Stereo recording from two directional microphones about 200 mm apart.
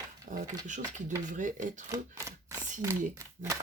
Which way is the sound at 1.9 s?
15° right (ahead or behind).